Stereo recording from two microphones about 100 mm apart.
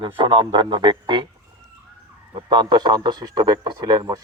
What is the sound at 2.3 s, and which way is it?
Speech, 50° right (ahead or behind).